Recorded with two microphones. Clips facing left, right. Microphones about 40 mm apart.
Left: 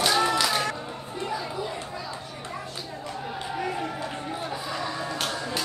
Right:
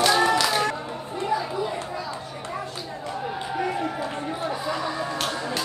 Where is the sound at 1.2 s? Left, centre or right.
Centre.